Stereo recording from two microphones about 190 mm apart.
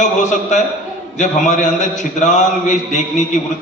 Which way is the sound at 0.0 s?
40° left (ahead or behind).